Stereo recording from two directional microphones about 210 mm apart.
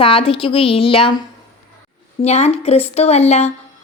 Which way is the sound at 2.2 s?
30° left (ahead or behind).